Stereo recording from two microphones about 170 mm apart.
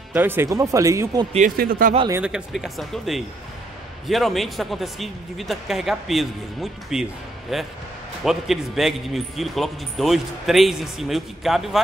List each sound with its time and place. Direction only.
0.1 s speech: 10° right (ahead or behind)
1.6 s speech: 55° right (ahead or behind)
2.2 s speech: 5° right (ahead or behind)